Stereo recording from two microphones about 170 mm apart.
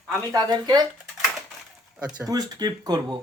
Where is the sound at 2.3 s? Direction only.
25° right (ahead or behind).